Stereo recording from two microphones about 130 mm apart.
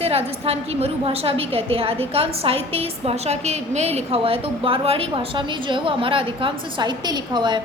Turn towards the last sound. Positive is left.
turn(degrees=-35)  # may be behind; listen again after turning